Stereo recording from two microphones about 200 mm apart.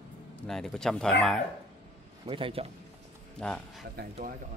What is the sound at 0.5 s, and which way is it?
Speech, centre (ahead or behind).